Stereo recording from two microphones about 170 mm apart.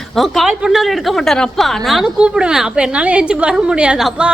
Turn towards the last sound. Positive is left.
turn(degrees=-5)  # may be behind; listen again after turning